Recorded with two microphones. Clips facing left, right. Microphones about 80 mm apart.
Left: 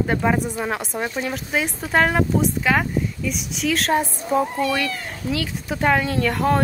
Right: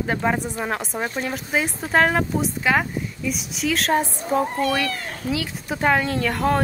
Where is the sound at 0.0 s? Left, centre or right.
Centre.